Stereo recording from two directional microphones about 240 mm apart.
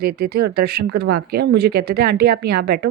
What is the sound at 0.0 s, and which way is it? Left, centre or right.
A woman's voice, right.